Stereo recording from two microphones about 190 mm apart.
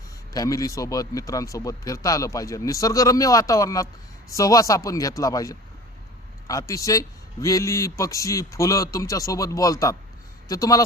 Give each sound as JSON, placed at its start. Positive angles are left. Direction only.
{"t": 0.3, "sound": "a man's voice", "side_deg": 20}